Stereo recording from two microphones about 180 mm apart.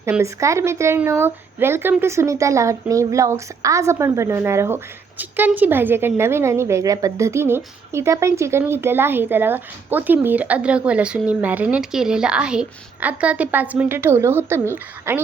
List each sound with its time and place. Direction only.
0.0 s speech: 15° right (ahead or behind)